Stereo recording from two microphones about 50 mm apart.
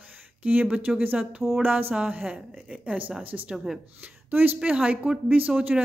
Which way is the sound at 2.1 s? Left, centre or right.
Right.